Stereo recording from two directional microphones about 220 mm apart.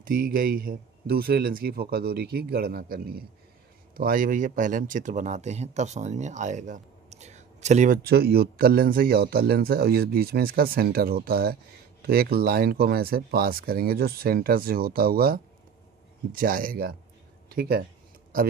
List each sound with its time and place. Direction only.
0.0 s speech: 40° right (ahead or behind)